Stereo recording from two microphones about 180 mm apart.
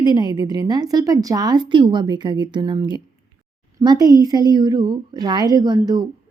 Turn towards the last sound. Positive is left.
turn(degrees=-20)  # may be behind; listen again after turning